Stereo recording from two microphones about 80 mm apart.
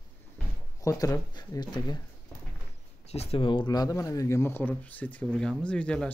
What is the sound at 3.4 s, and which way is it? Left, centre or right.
Speech, left.